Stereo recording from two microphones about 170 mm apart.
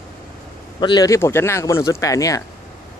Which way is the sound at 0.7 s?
25° left (ahead or behind).